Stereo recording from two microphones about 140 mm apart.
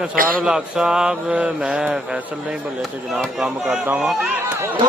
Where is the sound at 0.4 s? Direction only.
5° right (ahead or behind).